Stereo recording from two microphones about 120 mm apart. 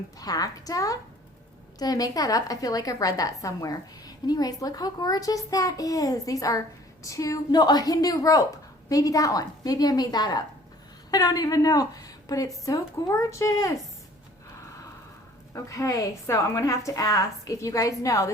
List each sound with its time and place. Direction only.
0.2 s a woman's voice: 30° left (ahead or behind)
15.5 s a woman's voice: 25° left (ahead or behind)